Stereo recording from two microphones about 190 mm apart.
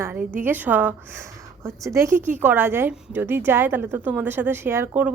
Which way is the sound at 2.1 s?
40° right (ahead or behind).